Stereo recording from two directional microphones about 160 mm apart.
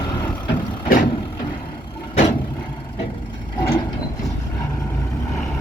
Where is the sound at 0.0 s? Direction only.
25° left (ahead or behind).